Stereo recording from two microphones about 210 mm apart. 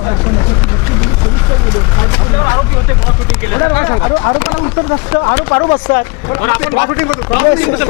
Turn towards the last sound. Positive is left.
turn(degrees=20)  # may be behind; listen again after turning